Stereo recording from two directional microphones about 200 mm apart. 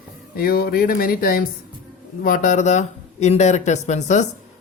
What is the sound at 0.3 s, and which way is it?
Speech, 50° left (ahead or behind).